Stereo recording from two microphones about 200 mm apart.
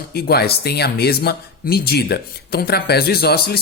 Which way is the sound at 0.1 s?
50° left (ahead or behind).